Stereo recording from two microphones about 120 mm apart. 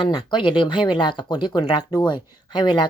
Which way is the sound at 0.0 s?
40° left (ahead or behind).